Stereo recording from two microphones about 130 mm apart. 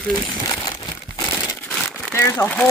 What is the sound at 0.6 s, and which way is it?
Crumpling, 35° left (ahead or behind).